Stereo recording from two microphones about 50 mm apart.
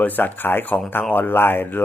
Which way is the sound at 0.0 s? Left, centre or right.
Left.